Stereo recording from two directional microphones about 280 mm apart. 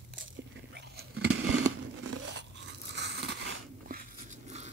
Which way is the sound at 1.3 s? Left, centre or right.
Right.